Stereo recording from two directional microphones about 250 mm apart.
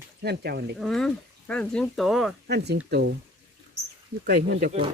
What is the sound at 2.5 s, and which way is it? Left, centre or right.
Speech, right.